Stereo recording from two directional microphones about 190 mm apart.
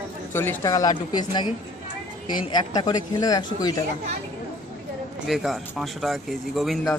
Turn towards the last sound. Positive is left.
turn(degrees=0)  # may be behind; listen again after turning